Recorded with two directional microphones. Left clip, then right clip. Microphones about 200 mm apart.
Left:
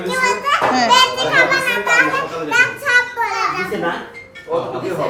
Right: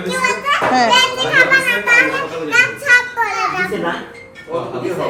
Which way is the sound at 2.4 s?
Centre (ahead or behind).